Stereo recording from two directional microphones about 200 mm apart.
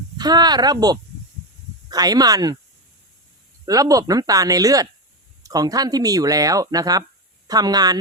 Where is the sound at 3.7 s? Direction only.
15° right (ahead or behind).